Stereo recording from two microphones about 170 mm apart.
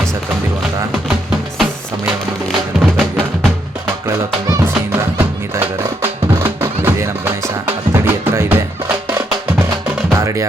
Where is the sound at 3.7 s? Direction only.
15° right (ahead or behind).